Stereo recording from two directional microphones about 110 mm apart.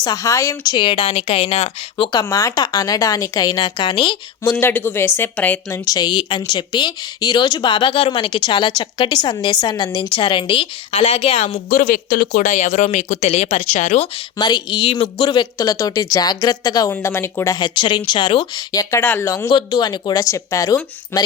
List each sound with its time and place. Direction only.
0.0 s speech: 35° left (ahead or behind); by 2.0 s 65° left (ahead or behind)
2.2 s a woman's voice: 30° left (ahead or behind); by 4.2 s 50° left (ahead or behind)
4.6 s a woman's voice: 20° left (ahead or behind)
5.6 s a woman's voice: 30° left (ahead or behind)
10.0 s a woman's voice: 50° left (ahead or behind)
12.5 s speech: 90° left
14.3 s a woman's voice: 40° left (ahead or behind)
16.9 s a woman's voice: 25° left (ahead or behind)
17.6 s speech: 45° left (ahead or behind)
19.0 s speech: 15° left (ahead or behind)
19.7 s a woman's voice: 40° left (ahead or behind); by 21.3 s 20° left (ahead or behind)